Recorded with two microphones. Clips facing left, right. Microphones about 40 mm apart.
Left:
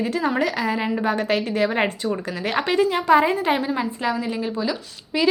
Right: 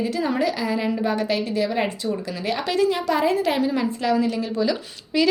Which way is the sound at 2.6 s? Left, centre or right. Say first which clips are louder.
Left 1 dB; left.